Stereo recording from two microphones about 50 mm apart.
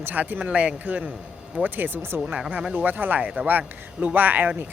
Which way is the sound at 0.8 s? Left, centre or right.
Right.